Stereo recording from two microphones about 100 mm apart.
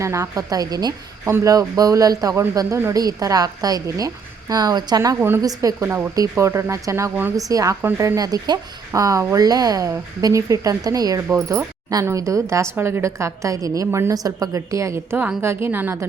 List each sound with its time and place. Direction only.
0.0 s speech: 30° right (ahead or behind)
5.8 s speech: 25° right (ahead or behind)
7.8 s speech: 25° right (ahead or behind)